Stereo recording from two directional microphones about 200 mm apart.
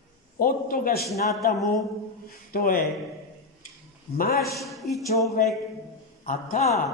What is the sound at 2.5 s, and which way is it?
Speech, 45° left (ahead or behind).